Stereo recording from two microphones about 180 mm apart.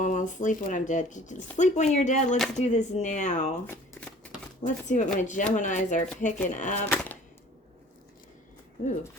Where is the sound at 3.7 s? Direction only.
5° left (ahead or behind).